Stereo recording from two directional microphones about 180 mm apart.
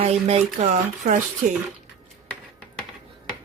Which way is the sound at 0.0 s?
35° right (ahead or behind).